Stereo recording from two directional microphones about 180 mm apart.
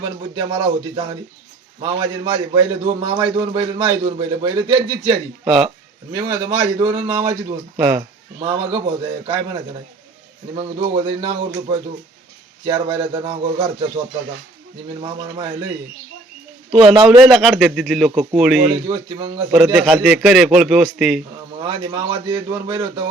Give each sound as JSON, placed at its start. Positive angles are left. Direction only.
{"t": 0.0, "sound": "a man's voice", "side_deg": -25}
{"t": 5.5, "sound": "a man's voice", "side_deg": 0}
{"t": 6.1, "sound": "a man's voice", "side_deg": -20}
{"t": 8.4, "sound": "a man's voice", "side_deg": -30}
{"t": 15.0, "sound": "a man's voice", "side_deg": -25}
{"t": 16.7, "sound": "a man's voice", "side_deg": -30}
{"t": 17.2, "sound": "a man's voice", "side_deg": 0}
{"t": 19.7, "sound": "a man's voice", "side_deg": 0}
{"t": 21.6, "sound": "a man's voice", "side_deg": -20}